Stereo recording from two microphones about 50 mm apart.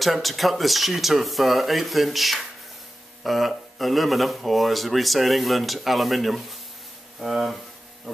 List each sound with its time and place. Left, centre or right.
0.0 s speech: centre